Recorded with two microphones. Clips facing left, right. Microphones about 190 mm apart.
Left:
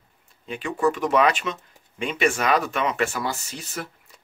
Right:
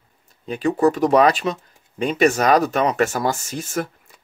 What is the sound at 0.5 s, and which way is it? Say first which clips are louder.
Speech: right 6 dB; 40° right (ahead or behind).